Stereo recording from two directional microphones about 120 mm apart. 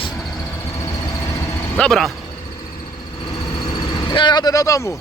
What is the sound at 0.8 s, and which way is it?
Vehicle, 25° left (ahead or behind).